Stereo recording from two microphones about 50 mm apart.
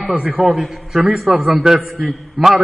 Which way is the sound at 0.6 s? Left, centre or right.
Centre.